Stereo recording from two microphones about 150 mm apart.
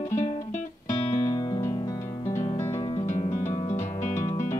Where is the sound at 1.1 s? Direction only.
25° left (ahead or behind).